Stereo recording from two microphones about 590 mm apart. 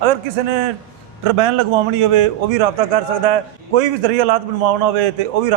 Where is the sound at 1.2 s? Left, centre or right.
Right.